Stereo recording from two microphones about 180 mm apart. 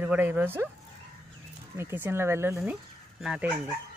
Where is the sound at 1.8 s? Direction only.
15° right (ahead or behind).